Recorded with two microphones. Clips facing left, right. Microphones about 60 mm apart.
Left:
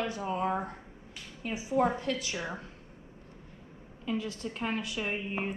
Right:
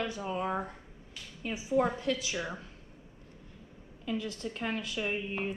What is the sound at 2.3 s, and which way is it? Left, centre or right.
Speech, centre.